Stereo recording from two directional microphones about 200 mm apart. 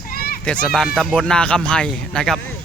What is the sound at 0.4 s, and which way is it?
Speech, 5° left (ahead or behind).